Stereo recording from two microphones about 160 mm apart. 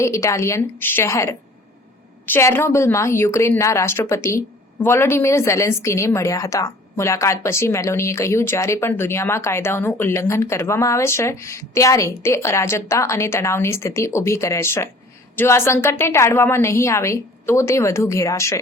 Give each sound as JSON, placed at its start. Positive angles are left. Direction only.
{"t": 0.0, "sound": "a woman's voice", "side_deg": 20}